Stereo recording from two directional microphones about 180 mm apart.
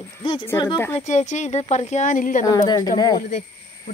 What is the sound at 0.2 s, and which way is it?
Speech, 30° left (ahead or behind).